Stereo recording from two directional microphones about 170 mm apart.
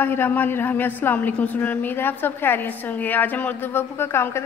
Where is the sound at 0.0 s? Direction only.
10° left (ahead or behind).